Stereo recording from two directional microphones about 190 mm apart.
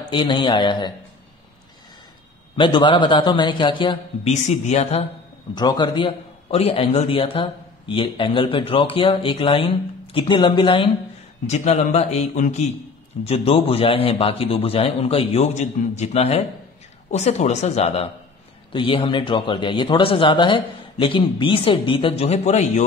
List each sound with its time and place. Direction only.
0.1 s a man's voice: 25° left (ahead or behind)
2.5 s a man's voice: 25° left (ahead or behind)
4.3 s a man's voice: 35° left (ahead or behind)
5.5 s a man's voice: 25° left (ahead or behind)